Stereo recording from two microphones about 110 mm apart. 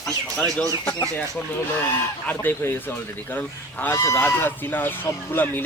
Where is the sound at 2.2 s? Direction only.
20° left (ahead or behind).